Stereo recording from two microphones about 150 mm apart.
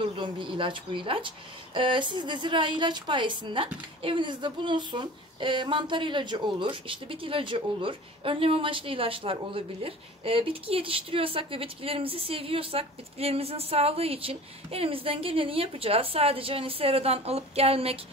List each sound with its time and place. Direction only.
0.0 s speech: 35° right (ahead or behind)